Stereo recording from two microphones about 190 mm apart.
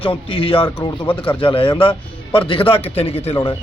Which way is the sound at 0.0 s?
30° left (ahead or behind).